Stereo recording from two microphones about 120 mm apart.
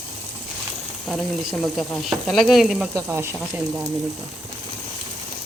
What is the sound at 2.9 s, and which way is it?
Speech, 25° right (ahead or behind).